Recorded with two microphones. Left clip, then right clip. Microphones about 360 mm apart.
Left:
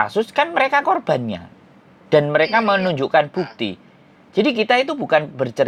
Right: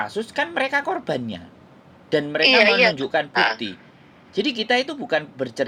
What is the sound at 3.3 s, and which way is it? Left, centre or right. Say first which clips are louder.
Speech: right 7 dB; right.